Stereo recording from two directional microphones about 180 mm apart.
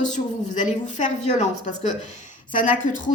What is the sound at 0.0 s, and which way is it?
A woman's voice, 45° left (ahead or behind).